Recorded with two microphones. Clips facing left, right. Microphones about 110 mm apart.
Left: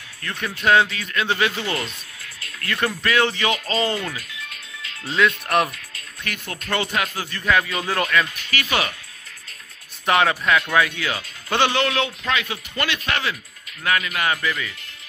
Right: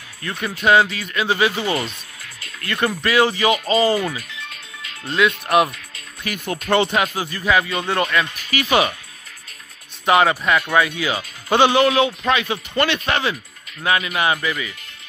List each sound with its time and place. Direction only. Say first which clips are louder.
0.2 s speech: right 3 dB; 5° right (ahead or behind)
5.9 s music: right 4 dB; 15° right (ahead or behind)
6.7 s speech: right 6 dB; 25° right (ahead or behind); by 8.3 s centre (ahead or behind)
8.5 s speech: right 6 dB; 15° right (ahead or behind)
10.0 s speech: right 3 dB; 5° right (ahead or behind)